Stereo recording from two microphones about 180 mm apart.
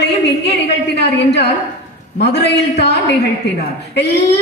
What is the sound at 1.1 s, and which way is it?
A woman's voice, 70° left (ahead or behind).